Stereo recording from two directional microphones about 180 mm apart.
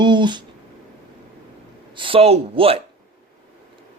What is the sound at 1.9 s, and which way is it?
Speech, 30° right (ahead or behind).